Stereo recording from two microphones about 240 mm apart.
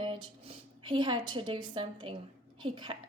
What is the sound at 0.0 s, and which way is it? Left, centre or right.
A woman's voice, right.